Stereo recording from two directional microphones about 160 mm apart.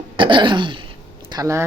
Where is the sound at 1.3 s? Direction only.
20° right (ahead or behind).